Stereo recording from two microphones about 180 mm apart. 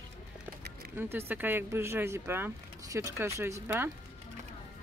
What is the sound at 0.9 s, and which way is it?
Speech, 15° right (ahead or behind).